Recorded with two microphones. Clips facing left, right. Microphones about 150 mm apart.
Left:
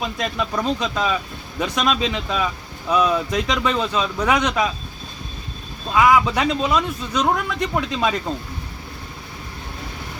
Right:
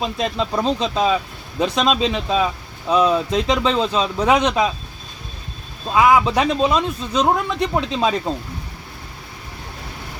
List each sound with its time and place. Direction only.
0.0 s speech: 25° right (ahead or behind)
5.9 s speech: 25° right (ahead or behind)